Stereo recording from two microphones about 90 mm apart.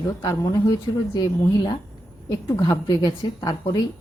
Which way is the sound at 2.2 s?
45° left (ahead or behind).